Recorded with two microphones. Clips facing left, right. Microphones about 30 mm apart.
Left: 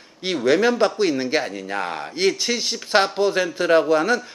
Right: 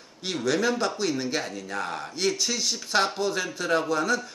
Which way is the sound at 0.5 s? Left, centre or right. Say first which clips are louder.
Left 7 dB; left.